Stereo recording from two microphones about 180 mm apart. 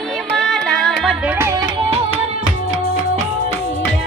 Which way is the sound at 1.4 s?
15° right (ahead or behind).